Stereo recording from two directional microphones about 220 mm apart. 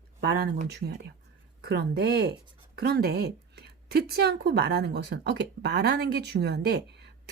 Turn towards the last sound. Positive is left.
turn(degrees=-50)  # may be behind; listen again after turning